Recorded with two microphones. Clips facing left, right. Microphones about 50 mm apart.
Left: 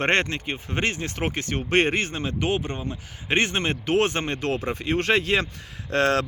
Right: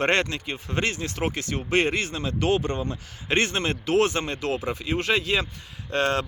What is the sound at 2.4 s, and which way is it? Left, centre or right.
Speech, centre.